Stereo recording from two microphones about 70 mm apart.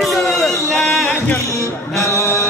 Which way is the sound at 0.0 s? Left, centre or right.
Centre.